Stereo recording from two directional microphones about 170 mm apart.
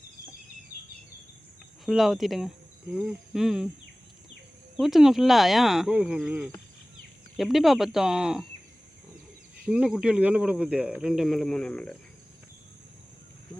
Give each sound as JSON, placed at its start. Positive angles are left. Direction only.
{"t": 1.8, "sound": "speech", "side_deg": 0}
{"t": 4.8, "sound": "speech", "side_deg": 0}
{"t": 9.6, "sound": "speech", "side_deg": -5}